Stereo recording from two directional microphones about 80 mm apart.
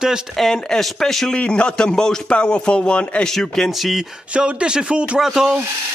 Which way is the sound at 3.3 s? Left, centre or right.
Centre.